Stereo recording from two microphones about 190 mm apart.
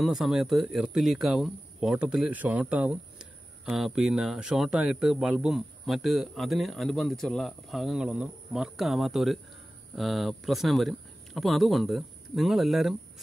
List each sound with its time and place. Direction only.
0.0 s speech: centre (ahead or behind)